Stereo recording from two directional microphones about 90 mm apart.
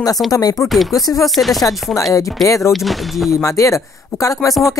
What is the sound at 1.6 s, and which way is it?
Speech, 40° left (ahead or behind).